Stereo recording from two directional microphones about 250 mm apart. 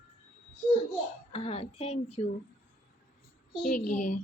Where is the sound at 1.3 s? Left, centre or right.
Left.